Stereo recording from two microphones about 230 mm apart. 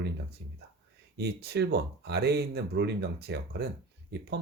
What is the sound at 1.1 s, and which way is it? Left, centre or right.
Speech, right.